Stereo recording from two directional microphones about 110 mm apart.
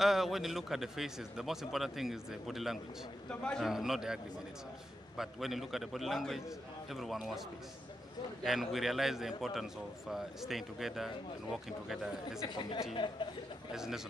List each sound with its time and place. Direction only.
0.0 s a man's voice: centre (ahead or behind)
3.3 s a man's voice: 10° left (ahead or behind)
3.6 s a man's voice: 5° right (ahead or behind)
8.5 s a man's voice: centre (ahead or behind)
12.4 s speech: 40° left (ahead or behind)
13.7 s a man's voice: 5° right (ahead or behind)